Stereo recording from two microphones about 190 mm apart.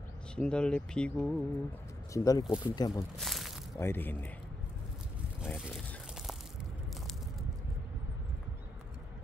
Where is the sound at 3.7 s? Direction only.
10° left (ahead or behind).